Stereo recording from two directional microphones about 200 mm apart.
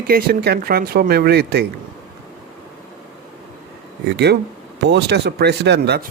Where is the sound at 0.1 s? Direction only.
50° right (ahead or behind).